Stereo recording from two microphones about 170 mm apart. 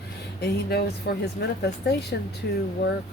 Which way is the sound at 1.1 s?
80° left.